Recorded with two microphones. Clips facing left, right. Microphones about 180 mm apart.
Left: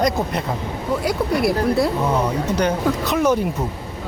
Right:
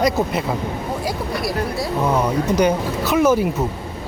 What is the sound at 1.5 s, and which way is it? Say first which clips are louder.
Speech: left 5 dB; 60° left (ahead or behind).